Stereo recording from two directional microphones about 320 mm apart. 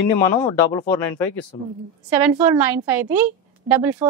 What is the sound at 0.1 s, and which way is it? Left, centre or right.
Speech, centre.